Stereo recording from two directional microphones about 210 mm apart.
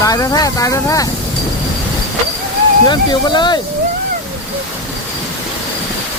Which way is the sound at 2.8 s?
20° left (ahead or behind).